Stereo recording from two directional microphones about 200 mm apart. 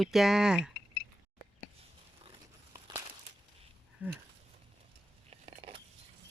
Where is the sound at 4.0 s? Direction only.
10° right (ahead or behind).